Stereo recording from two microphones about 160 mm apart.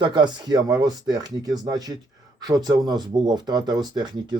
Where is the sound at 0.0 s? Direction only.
30° right (ahead or behind).